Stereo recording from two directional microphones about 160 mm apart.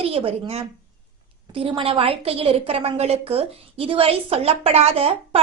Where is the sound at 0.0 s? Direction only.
35° right (ahead or behind).